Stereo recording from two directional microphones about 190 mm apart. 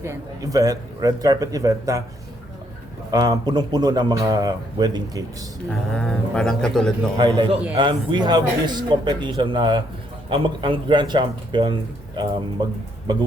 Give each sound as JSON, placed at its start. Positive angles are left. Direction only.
{"t": 0.0, "sound": "speech", "side_deg": -15}
{"t": 3.1, "sound": "speech", "side_deg": -20}
{"t": 5.9, "sound": "speech", "side_deg": 5}
{"t": 7.2, "sound": "speech", "side_deg": -25}